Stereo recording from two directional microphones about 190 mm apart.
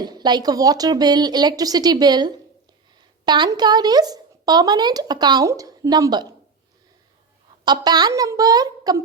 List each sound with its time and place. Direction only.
0.0 s speech: 20° right (ahead or behind)
7.6 s speech: 20° right (ahead or behind)